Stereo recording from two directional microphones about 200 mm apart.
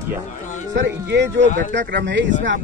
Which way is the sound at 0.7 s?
60° right (ahead or behind).